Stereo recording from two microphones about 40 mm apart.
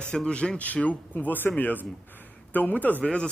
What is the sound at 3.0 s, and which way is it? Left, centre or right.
Speech, left.